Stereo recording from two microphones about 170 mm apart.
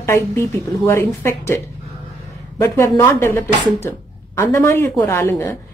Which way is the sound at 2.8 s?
15° left (ahead or behind).